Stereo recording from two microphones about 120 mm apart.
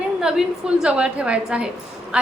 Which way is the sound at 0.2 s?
5° right (ahead or behind).